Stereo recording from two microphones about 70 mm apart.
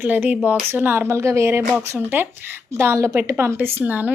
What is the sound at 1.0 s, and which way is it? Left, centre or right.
A woman's voice, right.